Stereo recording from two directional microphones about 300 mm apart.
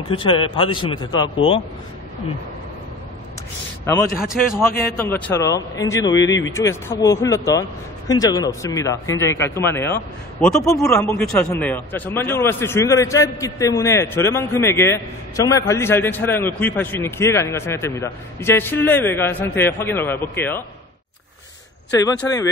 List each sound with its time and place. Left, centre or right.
0.1 s speech: centre
4.4 s a man's voice: centre
22.0 s speech: centre